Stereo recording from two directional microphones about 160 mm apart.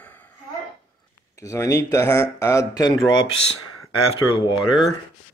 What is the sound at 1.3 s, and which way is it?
Speech, 20° left (ahead or behind).